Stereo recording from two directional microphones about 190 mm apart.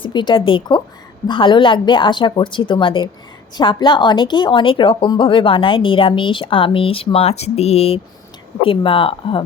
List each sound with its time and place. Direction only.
0.0 s a woman's voice: 25° left (ahead or behind)